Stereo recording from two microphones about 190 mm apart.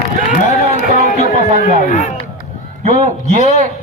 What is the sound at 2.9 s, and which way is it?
Speech, 40° right (ahead or behind).